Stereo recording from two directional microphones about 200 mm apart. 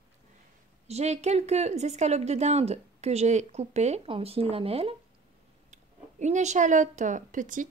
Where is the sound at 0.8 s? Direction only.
35° right (ahead or behind).